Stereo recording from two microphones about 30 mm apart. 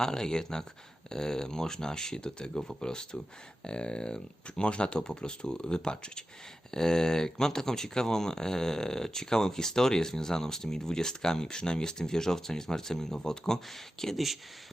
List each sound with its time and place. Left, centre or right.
0.0 s speech: left